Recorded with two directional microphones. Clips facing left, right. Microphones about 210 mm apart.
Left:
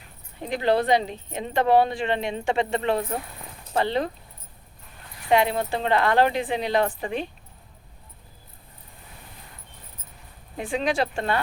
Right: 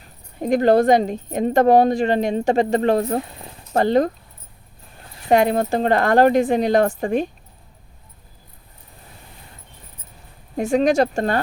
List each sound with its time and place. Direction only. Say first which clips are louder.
0.0 s speech: right 10 dB; 45° right (ahead or behind)
3.2 s speech: right 9 dB; 25° right (ahead or behind)
3.7 s speech: right 7 dB; 45° right (ahead or behind)
5.3 s speech: right 5 dB; 45° right (ahead or behind)
10.6 s speech: right 8 dB; 45° right (ahead or behind)